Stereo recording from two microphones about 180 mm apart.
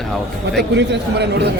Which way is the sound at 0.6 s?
70° right (ahead or behind).